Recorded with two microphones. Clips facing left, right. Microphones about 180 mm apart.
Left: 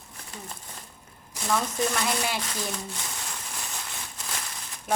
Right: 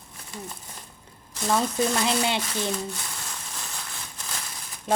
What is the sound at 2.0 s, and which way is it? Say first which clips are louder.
Speech: right 4 dB; 25° right (ahead or behind).